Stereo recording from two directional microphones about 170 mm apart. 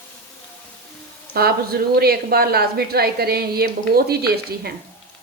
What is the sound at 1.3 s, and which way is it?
A woman's voice, 65° right (ahead or behind).